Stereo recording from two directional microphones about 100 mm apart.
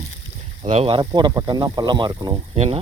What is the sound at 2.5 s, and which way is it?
Speech, 90° right.